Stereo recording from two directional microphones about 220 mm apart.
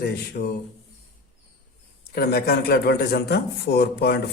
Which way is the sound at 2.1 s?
45° left (ahead or behind).